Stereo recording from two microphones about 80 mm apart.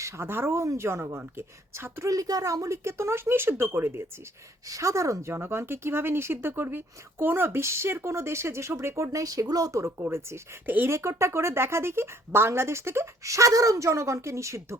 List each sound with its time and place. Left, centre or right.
0.0 s speech: right
4.6 s speech: right
10.0 s speech: right
10.7 s speech: right
10.9 s speech: right